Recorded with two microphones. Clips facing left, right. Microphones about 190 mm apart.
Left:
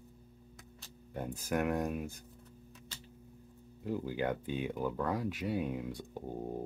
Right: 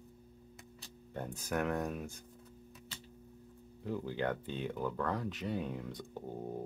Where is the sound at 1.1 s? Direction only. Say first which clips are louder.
Left 2 dB; 10° left (ahead or behind).